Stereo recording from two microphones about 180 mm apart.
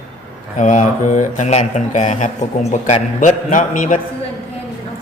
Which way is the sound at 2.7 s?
40° left (ahead or behind).